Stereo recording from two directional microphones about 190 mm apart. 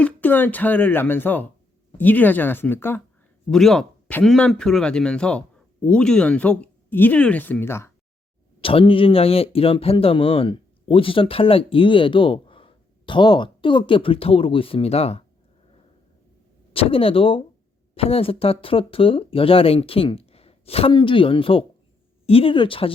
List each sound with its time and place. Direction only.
0.0 s speech: 10° left (ahead or behind)
8.6 s a man's voice: 30° left (ahead or behind)
16.7 s a man's voice: 30° left (ahead or behind)